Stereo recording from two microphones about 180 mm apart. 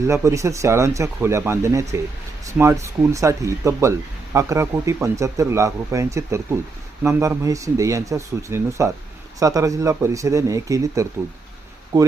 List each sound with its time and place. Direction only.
0.1 s speech: 15° right (ahead or behind)